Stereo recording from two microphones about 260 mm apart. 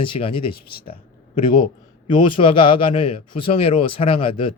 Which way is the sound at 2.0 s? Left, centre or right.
Centre.